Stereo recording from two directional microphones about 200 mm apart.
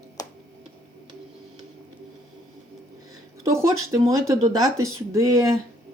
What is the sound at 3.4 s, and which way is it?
Speech, 15° right (ahead or behind).